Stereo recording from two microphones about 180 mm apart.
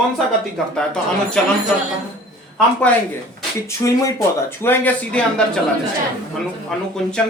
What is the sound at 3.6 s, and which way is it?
Speech, 15° left (ahead or behind).